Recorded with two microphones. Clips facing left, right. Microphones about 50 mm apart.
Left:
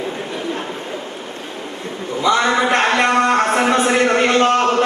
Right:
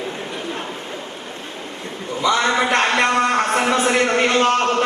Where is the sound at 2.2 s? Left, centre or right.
Centre.